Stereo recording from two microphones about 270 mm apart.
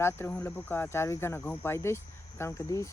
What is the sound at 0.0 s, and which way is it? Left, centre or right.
Speech, centre.